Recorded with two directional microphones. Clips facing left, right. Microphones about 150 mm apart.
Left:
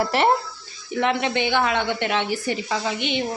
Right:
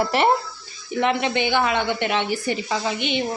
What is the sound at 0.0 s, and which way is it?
A woman's voice, 20° right (ahead or behind).